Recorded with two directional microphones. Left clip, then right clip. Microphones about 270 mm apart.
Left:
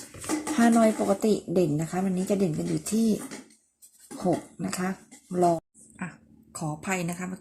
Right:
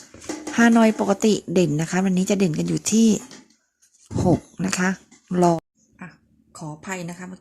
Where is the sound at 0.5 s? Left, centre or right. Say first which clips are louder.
Right 5 dB; right.